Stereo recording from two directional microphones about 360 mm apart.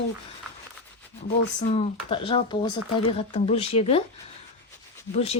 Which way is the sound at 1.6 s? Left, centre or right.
Centre.